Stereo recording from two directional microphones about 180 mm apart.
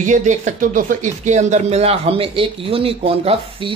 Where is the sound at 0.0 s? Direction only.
40° right (ahead or behind).